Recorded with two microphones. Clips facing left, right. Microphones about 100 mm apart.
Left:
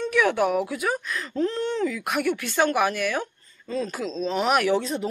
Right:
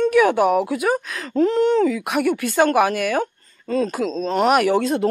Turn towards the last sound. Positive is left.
turn(degrees=-55)  # may be behind; listen again after turning